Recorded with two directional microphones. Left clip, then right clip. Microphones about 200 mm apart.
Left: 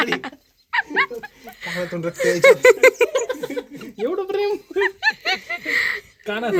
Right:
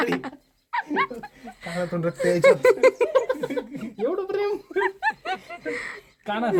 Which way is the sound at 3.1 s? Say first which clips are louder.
Right 1 dB; 45° left (ahead or behind).